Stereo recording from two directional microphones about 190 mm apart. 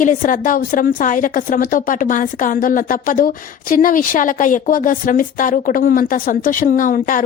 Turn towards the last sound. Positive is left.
turn(degrees=45)  # may be behind; listen again after turning